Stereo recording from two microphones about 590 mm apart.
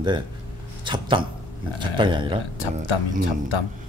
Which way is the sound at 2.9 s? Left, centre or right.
Left.